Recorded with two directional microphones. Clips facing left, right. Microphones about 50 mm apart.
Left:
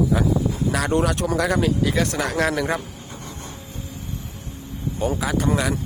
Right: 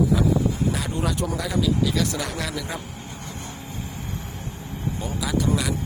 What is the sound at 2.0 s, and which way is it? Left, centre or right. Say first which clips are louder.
Speech: left 6 dB; left.